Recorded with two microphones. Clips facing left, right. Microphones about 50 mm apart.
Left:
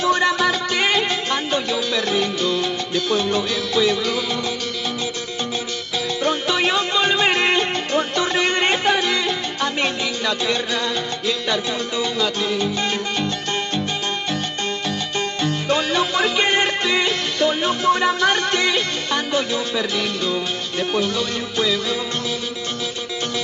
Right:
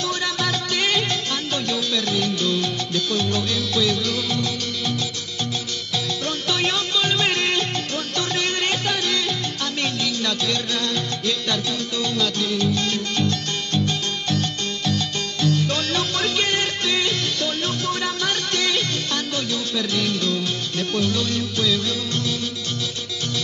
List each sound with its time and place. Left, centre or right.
0.0 s music: left
6.2 s music: centre
15.4 s music: left